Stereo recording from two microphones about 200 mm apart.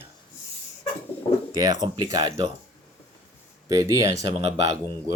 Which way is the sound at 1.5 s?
20° right (ahead or behind).